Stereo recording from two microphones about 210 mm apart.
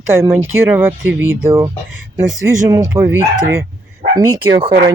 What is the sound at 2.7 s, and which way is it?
Speech, 15° right (ahead or behind).